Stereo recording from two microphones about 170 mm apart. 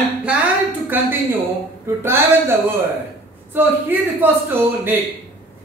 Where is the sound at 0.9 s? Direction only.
10° right (ahead or behind).